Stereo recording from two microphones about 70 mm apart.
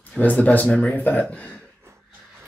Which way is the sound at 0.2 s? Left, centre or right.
Left.